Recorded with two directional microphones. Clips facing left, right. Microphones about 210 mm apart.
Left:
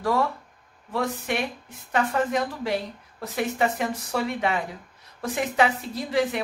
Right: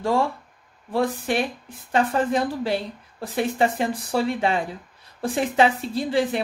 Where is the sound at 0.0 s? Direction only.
30° right (ahead or behind).